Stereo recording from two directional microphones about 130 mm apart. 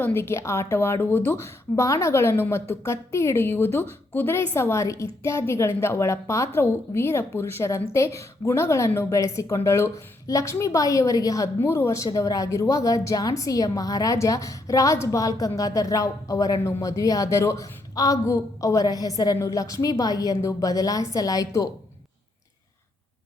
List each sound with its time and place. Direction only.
0.0 s a woman's voice: 20° left (ahead or behind)